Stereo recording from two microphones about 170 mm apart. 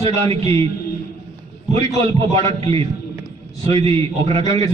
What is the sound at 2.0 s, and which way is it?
Speech, 35° right (ahead or behind).